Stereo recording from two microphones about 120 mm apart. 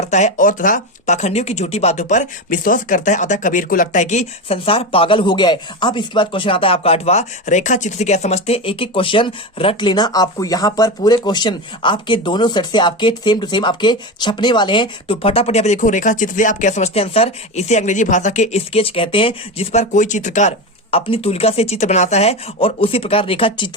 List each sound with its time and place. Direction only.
0.1 s speech: 80° left; by 19.8 s 50° left (ahead or behind)
19.8 s speech: 90° left
20.9 s speech: 55° left (ahead or behind)